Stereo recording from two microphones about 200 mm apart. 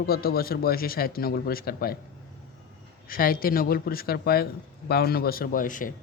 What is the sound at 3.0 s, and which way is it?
Speech, 45° left (ahead or behind).